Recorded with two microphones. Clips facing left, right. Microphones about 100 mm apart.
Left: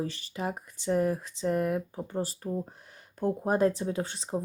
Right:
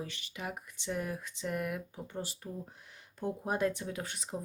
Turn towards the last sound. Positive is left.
turn(degrees=30)  # may be behind; listen again after turning